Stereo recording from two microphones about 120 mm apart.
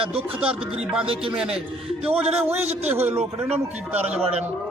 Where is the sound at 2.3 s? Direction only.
55° right (ahead or behind).